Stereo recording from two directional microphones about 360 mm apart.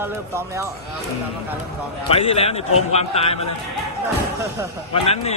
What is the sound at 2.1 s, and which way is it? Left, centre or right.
A man's voice, centre.